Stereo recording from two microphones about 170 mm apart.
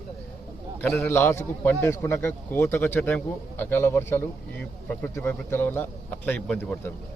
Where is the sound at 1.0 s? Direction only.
15° left (ahead or behind).